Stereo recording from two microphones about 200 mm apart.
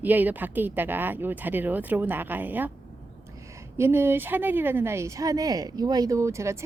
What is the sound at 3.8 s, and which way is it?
A woman's voice, 10° right (ahead or behind).